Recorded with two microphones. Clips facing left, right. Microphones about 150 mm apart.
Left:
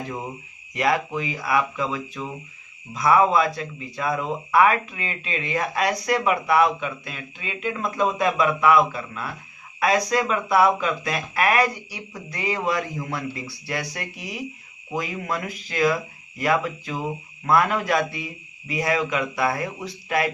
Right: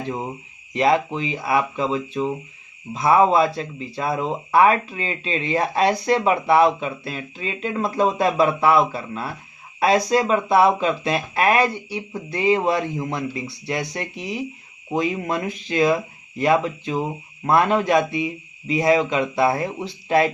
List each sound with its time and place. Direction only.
0.0 s speech: 25° right (ahead or behind)